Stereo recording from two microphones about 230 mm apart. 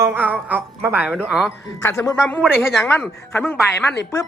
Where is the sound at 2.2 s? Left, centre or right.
Centre.